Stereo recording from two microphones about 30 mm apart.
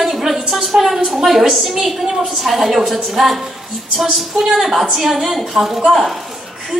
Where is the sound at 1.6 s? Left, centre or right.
Centre.